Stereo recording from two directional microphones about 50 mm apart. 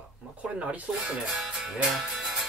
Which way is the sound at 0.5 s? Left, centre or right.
Right.